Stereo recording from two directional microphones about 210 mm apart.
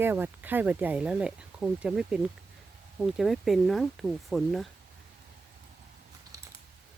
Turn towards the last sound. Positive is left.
turn(degrees=-15)  # may be behind; listen again after turning